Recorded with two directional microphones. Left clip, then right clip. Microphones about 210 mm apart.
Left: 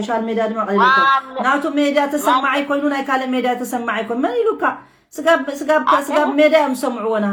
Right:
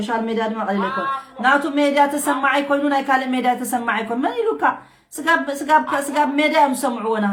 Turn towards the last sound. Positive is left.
turn(degrees=-10)  # may be behind; listen again after turning